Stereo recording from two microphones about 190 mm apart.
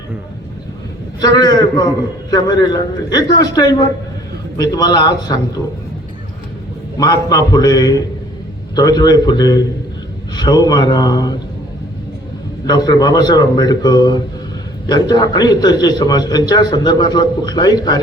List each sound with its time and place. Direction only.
1.2 s a man's voice: 20° left (ahead or behind)
6.9 s a man's voice: 20° left (ahead or behind)
12.6 s a man's voice: 20° left (ahead or behind)